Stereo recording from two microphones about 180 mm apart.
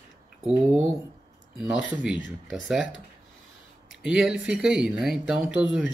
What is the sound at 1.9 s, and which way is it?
Speech, 5° right (ahead or behind).